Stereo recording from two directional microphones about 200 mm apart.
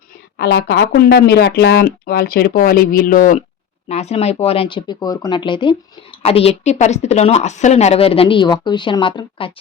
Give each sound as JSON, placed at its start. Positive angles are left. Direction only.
{"t": 0.3, "sound": "speech", "side_deg": 55}